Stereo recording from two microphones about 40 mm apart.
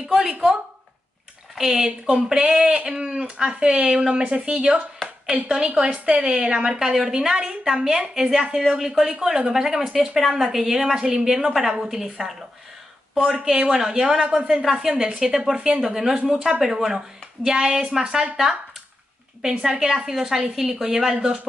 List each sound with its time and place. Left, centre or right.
0.1 s a woman's voice: centre
1.9 s a woman's voice: right
8.6 s a woman's voice: centre
13.1 s a woman's voice: right
15.5 s a woman's voice: right
15.8 s a woman's voice: centre
17.5 s a woman's voice: centre
19.4 s a woman's voice: centre
21.1 s a woman's voice: right